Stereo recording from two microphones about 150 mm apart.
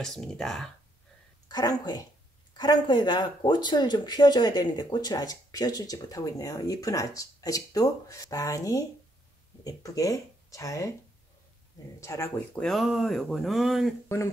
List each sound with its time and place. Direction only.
0.0 s speech: 5° left (ahead or behind)
1.5 s speech: 25° left (ahead or behind)
12.0 s speech: 20° left (ahead or behind)
12.5 s speech: centre (ahead or behind)
14.0 s speech: 20° left (ahead or behind)